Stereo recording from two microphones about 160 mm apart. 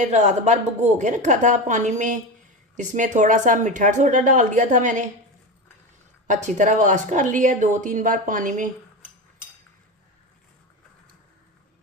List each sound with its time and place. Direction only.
0.0 s speech: 45° right (ahead or behind)
6.2 s speech: 50° right (ahead or behind)